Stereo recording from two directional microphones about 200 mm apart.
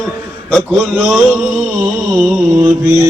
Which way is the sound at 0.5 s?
Centre (ahead or behind).